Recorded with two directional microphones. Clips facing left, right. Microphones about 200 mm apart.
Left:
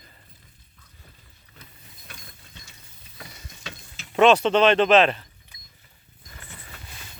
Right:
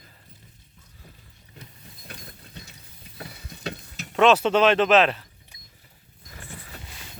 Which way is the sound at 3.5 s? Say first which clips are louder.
Right 10 dB; 35° right (ahead or behind).